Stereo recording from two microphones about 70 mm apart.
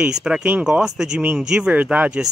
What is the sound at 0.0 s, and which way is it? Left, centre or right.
Speech, centre.